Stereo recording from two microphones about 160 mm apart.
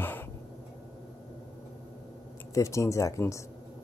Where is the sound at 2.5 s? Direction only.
20° left (ahead or behind).